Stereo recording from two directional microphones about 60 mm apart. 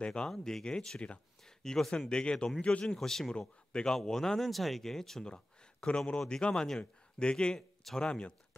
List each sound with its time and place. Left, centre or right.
0.0 s speech: centre
3.0 s speech: centre